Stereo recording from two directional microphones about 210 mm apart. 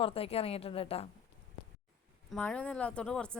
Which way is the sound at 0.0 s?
25° left (ahead or behind).